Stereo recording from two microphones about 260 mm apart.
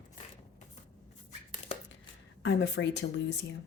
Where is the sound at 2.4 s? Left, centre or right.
Left.